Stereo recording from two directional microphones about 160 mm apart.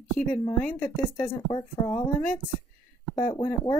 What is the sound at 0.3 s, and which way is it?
A woman's voice, 10° left (ahead or behind).